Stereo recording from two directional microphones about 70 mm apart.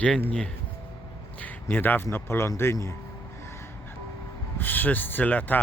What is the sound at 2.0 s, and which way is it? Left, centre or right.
Speech, left.